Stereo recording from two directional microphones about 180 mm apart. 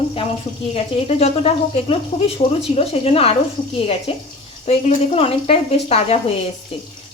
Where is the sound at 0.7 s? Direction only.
35° left (ahead or behind).